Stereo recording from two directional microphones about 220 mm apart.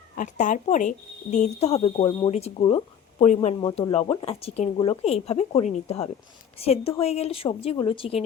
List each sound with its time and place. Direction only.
0.2 s speech: 35° left (ahead or behind)